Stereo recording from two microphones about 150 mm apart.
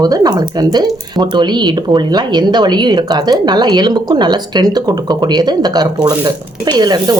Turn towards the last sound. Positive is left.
turn(degrees=-30)  # may be behind; listen again after turning